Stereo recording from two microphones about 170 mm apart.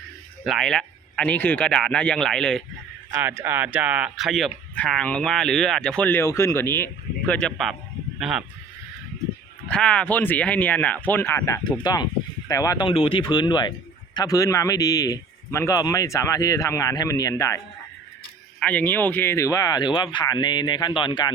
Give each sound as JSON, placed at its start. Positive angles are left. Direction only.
{"t": 0.4, "sound": "speech", "side_deg": 0}
{"t": 3.1, "sound": "speech", "side_deg": -10}
{"t": 9.6, "sound": "speech", "side_deg": 5}
{"t": 18.6, "sound": "speech", "side_deg": 10}